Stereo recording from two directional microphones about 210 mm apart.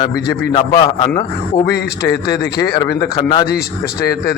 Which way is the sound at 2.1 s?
50° left (ahead or behind).